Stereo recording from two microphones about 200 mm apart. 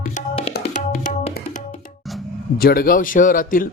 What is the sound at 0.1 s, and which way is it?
Tabla, 35° left (ahead or behind).